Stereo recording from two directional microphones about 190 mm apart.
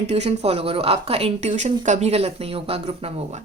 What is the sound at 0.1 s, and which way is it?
Speech, 35° right (ahead or behind).